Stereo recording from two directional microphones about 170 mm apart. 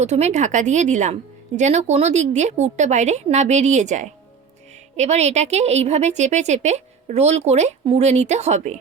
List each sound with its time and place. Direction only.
0.0 s a woman's voice: 40° right (ahead or behind)